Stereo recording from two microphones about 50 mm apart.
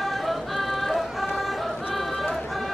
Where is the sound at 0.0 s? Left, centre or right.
Centre.